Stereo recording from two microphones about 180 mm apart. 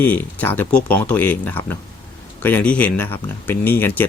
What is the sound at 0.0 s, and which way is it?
Speech, 10° left (ahead or behind).